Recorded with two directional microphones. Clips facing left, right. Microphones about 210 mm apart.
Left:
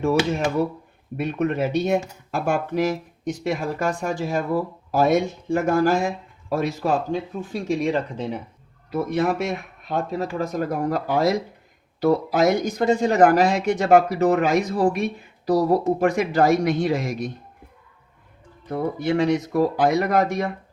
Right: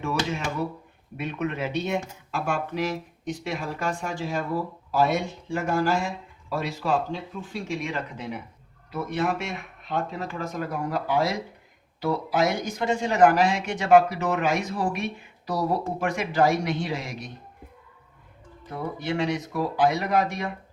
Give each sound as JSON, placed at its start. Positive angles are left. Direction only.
{"t": 1.1, "sound": "speech", "side_deg": 40}
{"t": 8.9, "sound": "speech", "side_deg": 40}
{"t": 18.9, "sound": "speech", "side_deg": 45}